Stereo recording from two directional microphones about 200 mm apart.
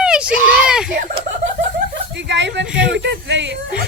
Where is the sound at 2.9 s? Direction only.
65° right (ahead or behind).